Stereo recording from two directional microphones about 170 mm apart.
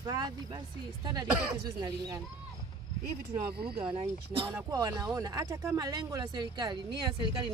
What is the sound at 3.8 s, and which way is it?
Speech, 30° right (ahead or behind).